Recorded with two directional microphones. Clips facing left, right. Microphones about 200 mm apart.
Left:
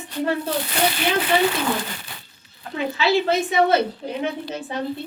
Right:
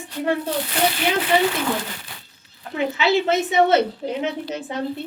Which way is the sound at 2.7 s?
20° right (ahead or behind).